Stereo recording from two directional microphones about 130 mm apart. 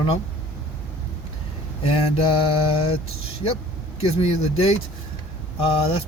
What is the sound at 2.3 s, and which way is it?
Speech, 45° left (ahead or behind).